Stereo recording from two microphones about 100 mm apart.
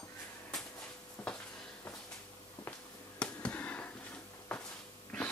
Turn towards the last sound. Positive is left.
turn(degrees=15)  # may be behind; listen again after turning